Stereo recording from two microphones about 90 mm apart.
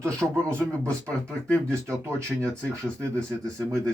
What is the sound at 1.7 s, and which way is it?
Speech, 30° right (ahead or behind).